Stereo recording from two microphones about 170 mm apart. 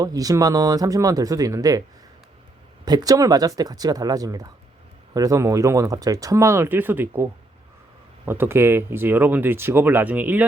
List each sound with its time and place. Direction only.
0.0 s speech: 20° right (ahead or behind)
2.8 s speech: 20° right (ahead or behind)